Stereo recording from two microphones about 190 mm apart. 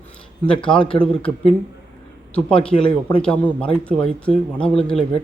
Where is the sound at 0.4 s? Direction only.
5° left (ahead or behind).